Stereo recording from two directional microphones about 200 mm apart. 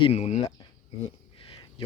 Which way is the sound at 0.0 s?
30° left (ahead or behind).